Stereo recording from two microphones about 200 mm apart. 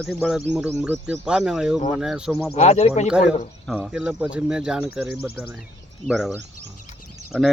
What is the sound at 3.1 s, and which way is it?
Speech, 5° right (ahead or behind).